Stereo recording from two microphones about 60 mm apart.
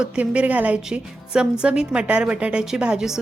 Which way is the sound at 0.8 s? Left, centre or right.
Centre.